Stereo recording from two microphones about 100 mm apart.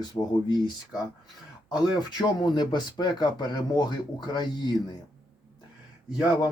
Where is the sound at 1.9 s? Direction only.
45° left (ahead or behind).